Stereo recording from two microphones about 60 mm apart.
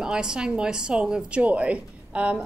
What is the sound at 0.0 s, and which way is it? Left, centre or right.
A woman's voice, centre.